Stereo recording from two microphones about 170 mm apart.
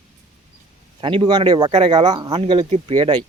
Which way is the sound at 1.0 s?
30° right (ahead or behind).